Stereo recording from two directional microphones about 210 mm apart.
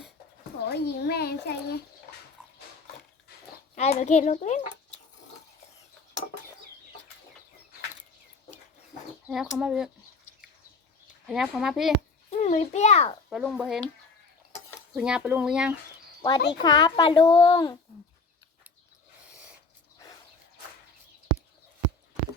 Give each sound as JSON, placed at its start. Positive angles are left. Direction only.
{"t": 0.7, "sound": "a child's voice", "side_deg": 50}
{"t": 3.8, "sound": "a child's voice", "side_deg": 30}
{"t": 9.2, "sound": "speech", "side_deg": -5}
{"t": 11.3, "sound": "speech", "side_deg": 0}
{"t": 12.3, "sound": "a child's voice", "side_deg": 35}
{"t": 13.3, "sound": "speech", "side_deg": -5}
{"t": 14.9, "sound": "speech", "side_deg": -5}
{"t": 16.5, "sound": "a child's voice", "side_deg": 20}